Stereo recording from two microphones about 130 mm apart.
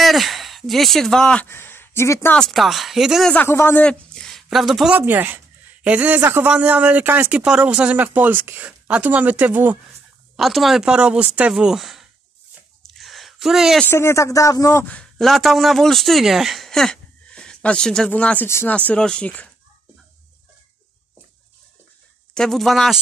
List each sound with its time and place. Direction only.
0.0 s speech: centre (ahead or behind)
1.5 s a sound: 15° left (ahead or behind)
2.3 s speech: centre (ahead or behind)
3.4 s speech: 20° left (ahead or behind); by 5.0 s 5° right (ahead or behind)
5.0 s a man's voice: 15° right (ahead or behind)
10.3 s speech: centre (ahead or behind)
12.8 s a sound: centre (ahead or behind)
13.8 s speech: 20° left (ahead or behind)
15.0 s a man's voice: 5° left (ahead or behind)
22.3 s speech: 5° left (ahead or behind)